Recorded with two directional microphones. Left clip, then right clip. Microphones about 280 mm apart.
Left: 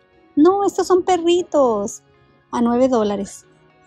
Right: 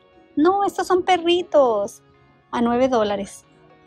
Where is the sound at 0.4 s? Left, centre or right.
Left.